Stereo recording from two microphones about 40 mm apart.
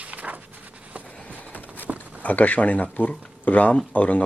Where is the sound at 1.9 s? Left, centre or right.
Right.